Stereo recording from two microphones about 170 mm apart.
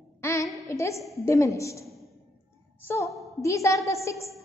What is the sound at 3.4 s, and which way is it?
Speech, 20° left (ahead or behind).